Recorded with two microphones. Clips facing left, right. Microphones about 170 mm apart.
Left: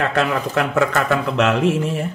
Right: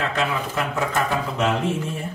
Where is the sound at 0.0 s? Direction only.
65° left (ahead or behind).